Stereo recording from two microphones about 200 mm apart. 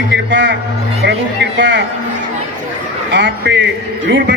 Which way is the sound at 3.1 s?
60° right (ahead or behind).